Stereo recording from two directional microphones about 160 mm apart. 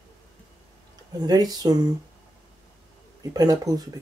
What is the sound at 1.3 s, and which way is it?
Speech, 25° right (ahead or behind).